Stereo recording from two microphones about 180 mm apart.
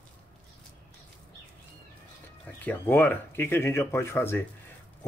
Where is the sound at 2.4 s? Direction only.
10° left (ahead or behind).